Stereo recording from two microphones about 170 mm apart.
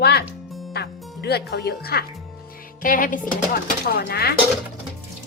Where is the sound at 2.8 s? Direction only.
55° left (ahead or behind); by 4.3 s 70° left (ahead or behind).